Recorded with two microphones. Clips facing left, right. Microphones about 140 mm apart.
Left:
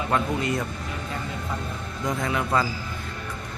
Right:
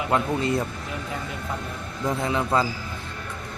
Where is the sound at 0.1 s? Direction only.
30° right (ahead or behind).